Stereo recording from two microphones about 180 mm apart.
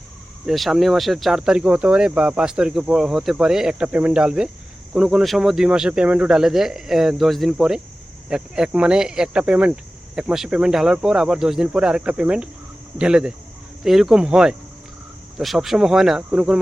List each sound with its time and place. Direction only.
0.4 s speech: centre (ahead or behind)